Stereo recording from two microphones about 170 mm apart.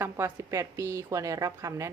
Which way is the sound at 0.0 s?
15° right (ahead or behind).